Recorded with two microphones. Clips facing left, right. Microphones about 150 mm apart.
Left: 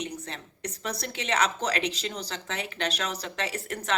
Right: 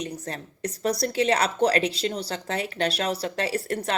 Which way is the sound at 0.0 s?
40° right (ahead or behind).